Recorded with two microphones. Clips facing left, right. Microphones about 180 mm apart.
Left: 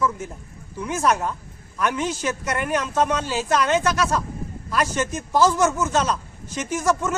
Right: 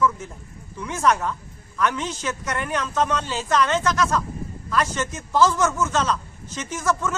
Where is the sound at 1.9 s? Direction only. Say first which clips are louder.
Left 3 dB; 10° left (ahead or behind).